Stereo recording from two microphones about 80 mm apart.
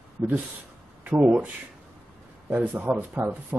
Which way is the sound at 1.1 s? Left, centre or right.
Centre.